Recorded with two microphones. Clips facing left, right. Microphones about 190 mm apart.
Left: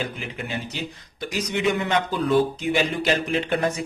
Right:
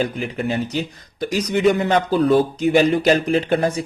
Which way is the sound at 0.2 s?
45° right (ahead or behind).